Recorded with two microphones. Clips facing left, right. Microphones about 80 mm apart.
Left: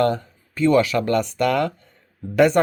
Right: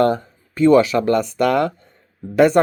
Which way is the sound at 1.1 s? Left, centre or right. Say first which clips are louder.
Right 2 dB; centre.